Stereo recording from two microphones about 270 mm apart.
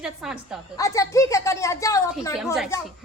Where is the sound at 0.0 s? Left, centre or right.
Centre.